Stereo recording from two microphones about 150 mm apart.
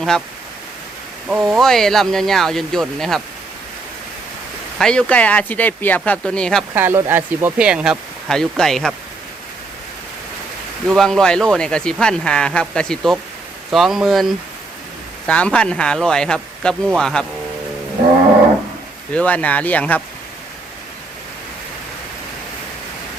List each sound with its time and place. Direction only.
1.5 s speech: centre (ahead or behind)
4.8 s speech: 5° left (ahead or behind)
6.7 s speech: 15° right (ahead or behind); by 9.0 s centre (ahead or behind)
10.8 s speech: centre (ahead or behind)
19.1 s speech: 10° left (ahead or behind)